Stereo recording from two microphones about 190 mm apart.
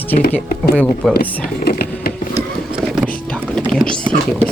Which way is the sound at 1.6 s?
55° left (ahead or behind).